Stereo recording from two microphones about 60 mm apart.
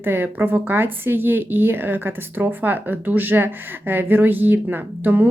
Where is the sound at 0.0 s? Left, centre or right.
Right.